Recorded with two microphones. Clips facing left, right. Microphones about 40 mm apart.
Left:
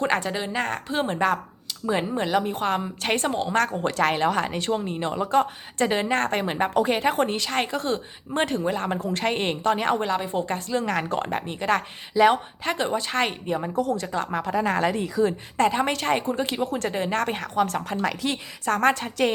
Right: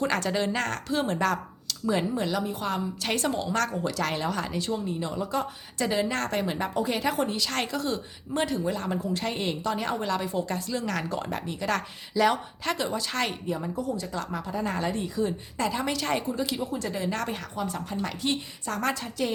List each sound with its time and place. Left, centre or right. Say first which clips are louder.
0.0 s speech: left 3 dB; left
0.3 s a woman's voice: even; centre; by 7.4 s left
7.4 s a woman's voice: left 3 dB; left
10.1 s speech: left 3 dB; left
10.8 s a woman's voice: left 7 dB; left
13.5 s a woman's voice: left 5 dB; left
14.1 s a woman's voice: left 6 dB; left
14.4 s speech: left 7 dB; left
15.5 s a woman's voice: left 7 dB; left
18.7 s a woman's voice: left 8 dB; left